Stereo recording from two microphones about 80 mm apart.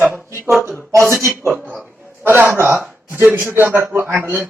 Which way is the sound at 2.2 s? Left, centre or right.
Right.